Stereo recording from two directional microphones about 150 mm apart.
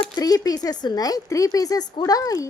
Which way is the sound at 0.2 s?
25° left (ahead or behind).